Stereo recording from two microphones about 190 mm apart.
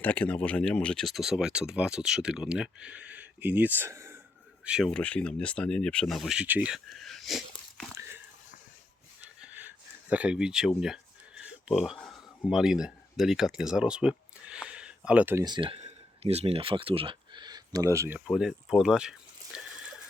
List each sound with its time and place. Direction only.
0.0 s speech: 5° left (ahead or behind); by 4.2 s 15° right (ahead or behind)
4.6 s speech: 5° right (ahead or behind)
7.9 s biting: 10° right (ahead or behind)
9.4 s a sound: 10° right (ahead or behind)
11.7 s speech: centre (ahead or behind)
15.4 s speech: 25° right (ahead or behind)
18.3 s speech: 5° right (ahead or behind)
19.5 s water: 5° right (ahead or behind)